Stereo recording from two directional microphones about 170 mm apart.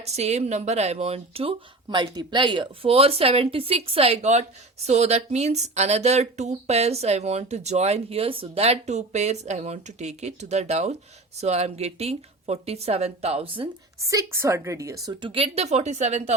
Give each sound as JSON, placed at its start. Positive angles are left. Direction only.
{"t": 0.0, "sound": "speech", "side_deg": -40}
{"t": 14.0, "sound": "a woman's voice", "side_deg": -20}